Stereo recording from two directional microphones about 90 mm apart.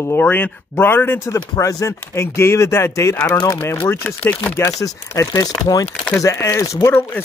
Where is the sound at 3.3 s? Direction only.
45° left (ahead or behind).